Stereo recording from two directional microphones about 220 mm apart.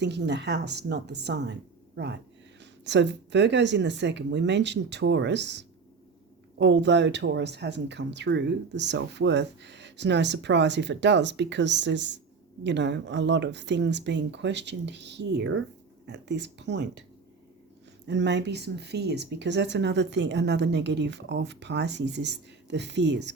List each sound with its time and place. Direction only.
0.0 s speech: 50° right (ahead or behind)
2.6 s speech: 55° right (ahead or behind)
18.0 s speech: 55° right (ahead or behind)